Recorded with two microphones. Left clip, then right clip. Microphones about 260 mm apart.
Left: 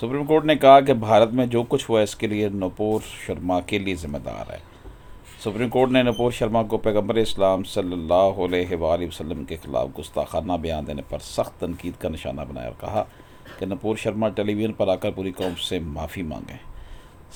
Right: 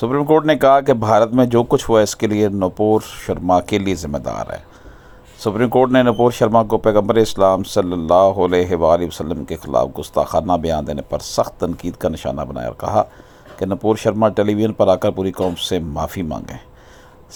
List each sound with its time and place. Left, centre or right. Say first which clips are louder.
0.0 s speech: right 6 dB; right